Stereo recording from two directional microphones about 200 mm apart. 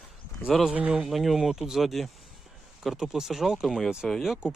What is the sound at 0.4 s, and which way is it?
Speech, centre (ahead or behind).